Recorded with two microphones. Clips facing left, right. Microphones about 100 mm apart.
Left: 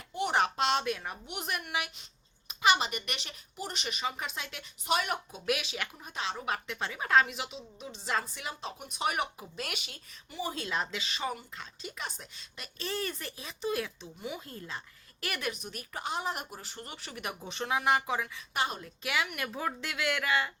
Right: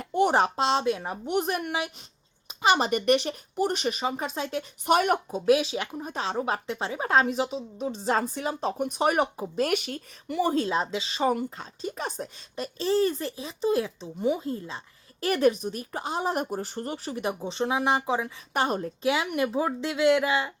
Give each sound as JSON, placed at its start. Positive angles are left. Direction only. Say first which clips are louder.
{"t": 0.0, "sound": "a sound", "louder": "right 10 dB", "side_deg": -45}
{"t": 0.3, "sound": "speech", "louder": "right 5 dB", "side_deg": -30}
{"t": 1.2, "sound": "speech", "louder": "right 11 dB", "side_deg": -40}
{"t": 2.5, "sound": "a sound", "louder": "right 3 dB", "side_deg": -30}
{"t": 2.7, "sound": "speech", "louder": "right 12 dB", "side_deg": -45}
{"t": 4.9, "sound": "speech", "louder": "right 8 dB", "side_deg": -50}
{"t": 5.5, "sound": "speech", "louder": "right 11 dB", "side_deg": -30}
{"t": 9.7, "sound": "speech", "louder": "right 16 dB", "side_deg": -50}
{"t": 10.5, "sound": "speech", "louder": "right 9 dB", "side_deg": -35}
{"t": 18.5, "sound": "speech", "louder": "right 7 dB", "side_deg": -45}
{"t": 19.0, "sound": "speech", "louder": "right 8 dB", "side_deg": -30}